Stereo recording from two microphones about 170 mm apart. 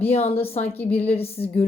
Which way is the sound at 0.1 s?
35° left (ahead or behind).